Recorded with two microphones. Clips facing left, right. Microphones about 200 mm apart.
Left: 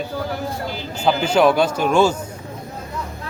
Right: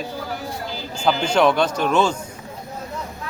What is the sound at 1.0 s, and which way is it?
A man's voice, 5° left (ahead or behind).